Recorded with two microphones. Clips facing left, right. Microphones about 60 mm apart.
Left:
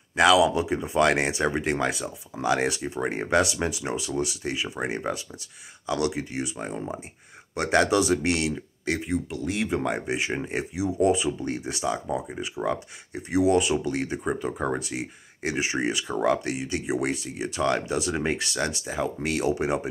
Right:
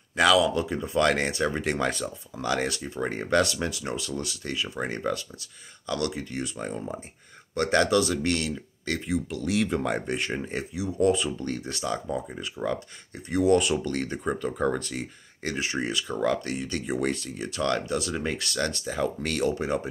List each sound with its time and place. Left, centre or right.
0.1 s speech: centre
1.6 s speech: centre
9.1 s speech: centre
13.4 s speech: centre
19.5 s speech: centre